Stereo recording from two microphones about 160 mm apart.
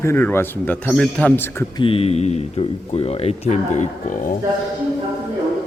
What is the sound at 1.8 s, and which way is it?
Speech, 35° left (ahead or behind).